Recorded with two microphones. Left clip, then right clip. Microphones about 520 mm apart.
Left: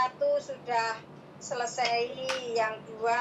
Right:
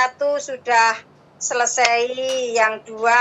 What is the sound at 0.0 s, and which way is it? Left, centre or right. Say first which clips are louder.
A woman's voice: right 8 dB; right.